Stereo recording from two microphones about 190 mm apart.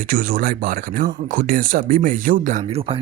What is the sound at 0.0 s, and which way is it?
Speech, 50° right (ahead or behind).